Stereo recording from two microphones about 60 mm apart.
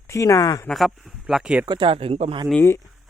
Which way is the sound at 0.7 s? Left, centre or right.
Centre.